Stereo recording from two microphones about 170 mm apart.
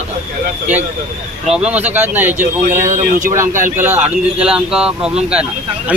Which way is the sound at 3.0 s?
50° right (ahead or behind).